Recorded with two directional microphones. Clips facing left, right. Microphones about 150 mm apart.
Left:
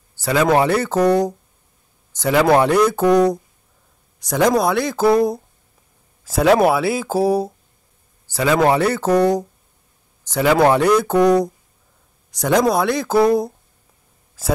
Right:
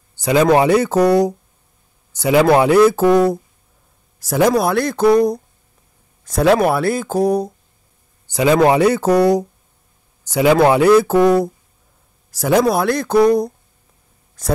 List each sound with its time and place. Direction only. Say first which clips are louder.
0.1 s a man's voice: right 3 dB; 20° right (ahead or behind); by 7.5 s 5° left (ahead or behind)
8.3 s a man's voice: right 3 dB; 15° right (ahead or behind); by 13.5 s 5° left (ahead or behind)